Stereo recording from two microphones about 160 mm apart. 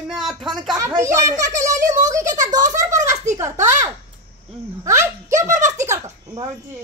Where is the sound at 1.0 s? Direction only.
20° right (ahead or behind).